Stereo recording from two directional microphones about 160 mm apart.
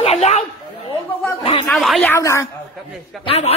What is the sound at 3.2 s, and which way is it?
Speech, 40° left (ahead or behind).